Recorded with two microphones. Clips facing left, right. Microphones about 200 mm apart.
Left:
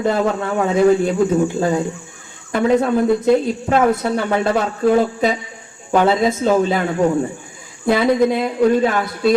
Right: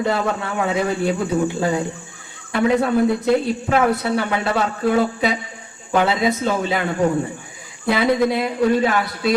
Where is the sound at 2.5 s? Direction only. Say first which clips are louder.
Left 2 dB; 45° left (ahead or behind).